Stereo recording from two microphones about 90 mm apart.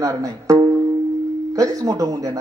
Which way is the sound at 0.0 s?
40° right (ahead or behind).